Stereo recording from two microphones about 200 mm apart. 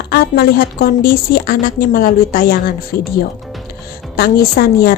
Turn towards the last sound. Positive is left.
turn(degrees=50)  # may be behind; listen again after turning